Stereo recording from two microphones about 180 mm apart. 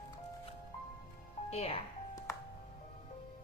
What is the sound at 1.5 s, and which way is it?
Speech, 35° left (ahead or behind).